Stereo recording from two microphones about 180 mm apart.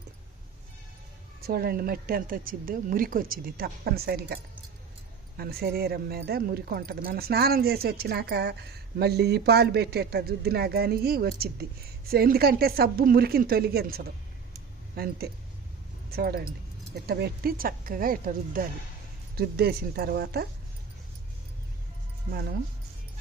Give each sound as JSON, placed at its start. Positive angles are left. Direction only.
{"t": 1.4, "sound": "speech", "side_deg": -60}
{"t": 5.4, "sound": "speech", "side_deg": -60}
{"t": 22.3, "sound": "speech", "side_deg": -60}